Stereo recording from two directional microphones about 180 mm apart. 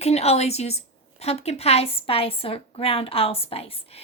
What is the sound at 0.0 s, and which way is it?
A woman's voice, 35° left (ahead or behind).